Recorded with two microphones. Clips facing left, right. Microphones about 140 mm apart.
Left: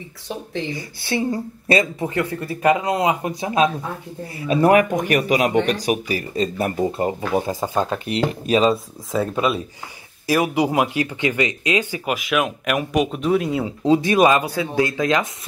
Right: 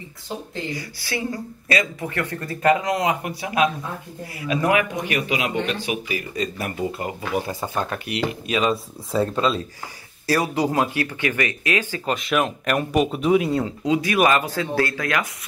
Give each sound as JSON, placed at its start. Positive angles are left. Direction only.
{"t": 0.7, "sound": "speech", "side_deg": 25}
{"t": 2.1, "sound": "speech", "side_deg": 10}
{"t": 2.8, "sound": "speech", "side_deg": 30}
{"t": 8.0, "sound": "speech", "side_deg": 35}
{"t": 9.1, "sound": "speech", "side_deg": 5}
{"t": 10.2, "sound": "speech", "side_deg": 15}
{"t": 12.2, "sound": "speech", "side_deg": 5}
{"t": 13.8, "sound": "speech", "side_deg": 35}
{"t": 14.1, "sound": "speech", "side_deg": 15}